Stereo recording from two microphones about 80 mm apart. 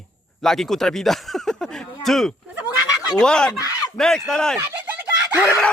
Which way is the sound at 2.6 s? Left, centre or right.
Left.